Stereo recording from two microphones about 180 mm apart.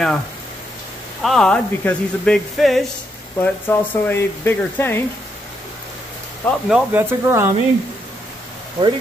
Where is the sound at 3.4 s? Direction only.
10° left (ahead or behind).